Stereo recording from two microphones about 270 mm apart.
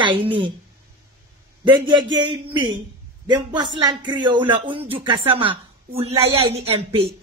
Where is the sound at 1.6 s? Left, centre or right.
Centre.